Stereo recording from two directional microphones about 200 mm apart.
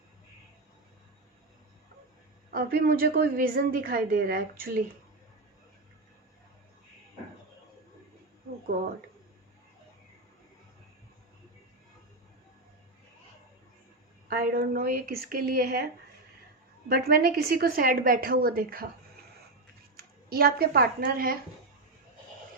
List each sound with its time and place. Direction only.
2.5 s a woman's voice: 45° right (ahead or behind)
14.3 s a woman's voice: 50° right (ahead or behind)
16.9 s a woman's voice: 50° right (ahead or behind)
20.0 s speech: 50° right (ahead or behind)